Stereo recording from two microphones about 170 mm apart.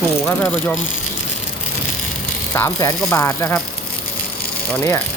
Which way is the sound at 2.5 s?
15° left (ahead or behind).